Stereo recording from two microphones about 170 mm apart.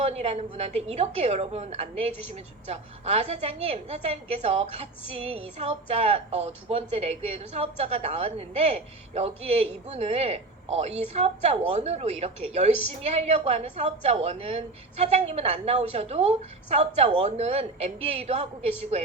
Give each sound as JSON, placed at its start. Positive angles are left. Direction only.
{"t": 0.0, "sound": "a woman's voice", "side_deg": -35}